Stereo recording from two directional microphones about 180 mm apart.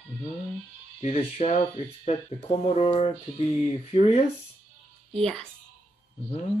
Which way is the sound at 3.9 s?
40° left (ahead or behind).